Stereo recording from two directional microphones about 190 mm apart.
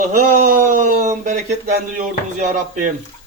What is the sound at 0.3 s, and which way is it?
Speech, 45° right (ahead or behind).